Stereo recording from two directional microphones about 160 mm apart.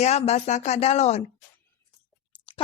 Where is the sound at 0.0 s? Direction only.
45° left (ahead or behind).